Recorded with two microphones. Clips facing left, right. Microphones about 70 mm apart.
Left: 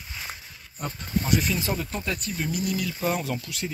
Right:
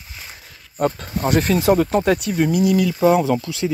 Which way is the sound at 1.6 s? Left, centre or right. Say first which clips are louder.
Right 14 dB; right.